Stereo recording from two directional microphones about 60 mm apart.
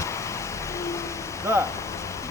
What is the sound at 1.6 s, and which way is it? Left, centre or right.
Rain, left.